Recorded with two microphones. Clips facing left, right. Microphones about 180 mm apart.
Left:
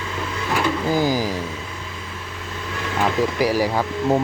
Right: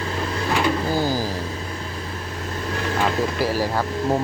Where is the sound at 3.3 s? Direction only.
15° left (ahead or behind).